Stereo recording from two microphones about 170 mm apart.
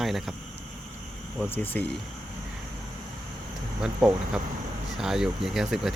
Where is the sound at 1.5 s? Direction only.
10° left (ahead or behind).